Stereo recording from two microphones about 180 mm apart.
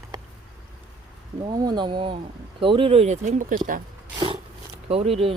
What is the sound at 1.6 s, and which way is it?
Speech, 25° right (ahead or behind).